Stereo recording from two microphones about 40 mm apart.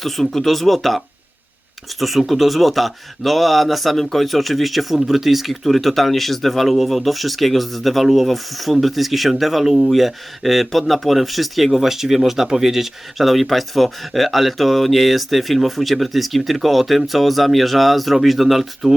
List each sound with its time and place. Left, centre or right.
0.0 s speech: centre